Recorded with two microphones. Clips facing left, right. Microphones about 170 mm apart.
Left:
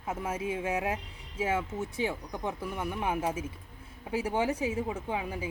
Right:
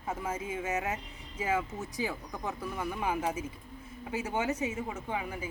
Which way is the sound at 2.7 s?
5° left (ahead or behind).